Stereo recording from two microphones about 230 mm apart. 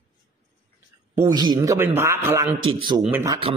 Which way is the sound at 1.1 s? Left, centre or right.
Centre.